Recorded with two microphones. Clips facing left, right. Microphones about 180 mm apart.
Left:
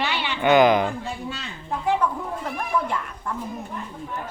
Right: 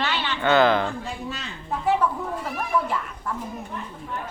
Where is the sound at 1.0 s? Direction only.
Centre (ahead or behind).